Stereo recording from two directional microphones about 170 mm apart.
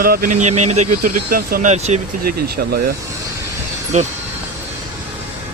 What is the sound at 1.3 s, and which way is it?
Speech, 55° right (ahead or behind).